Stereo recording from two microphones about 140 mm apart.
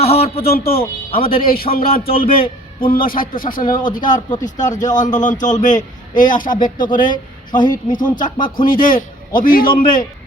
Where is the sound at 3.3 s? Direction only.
80° left.